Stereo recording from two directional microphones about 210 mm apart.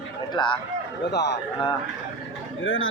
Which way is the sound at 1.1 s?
55° left (ahead or behind).